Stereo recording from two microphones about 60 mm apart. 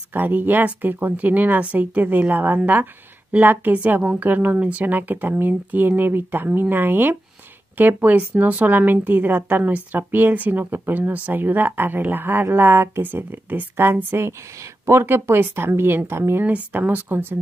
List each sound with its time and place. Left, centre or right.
0.1 s speech: right
16.4 s speech: right